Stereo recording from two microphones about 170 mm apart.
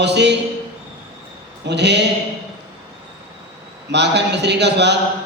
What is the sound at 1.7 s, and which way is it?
Speech, 85° right.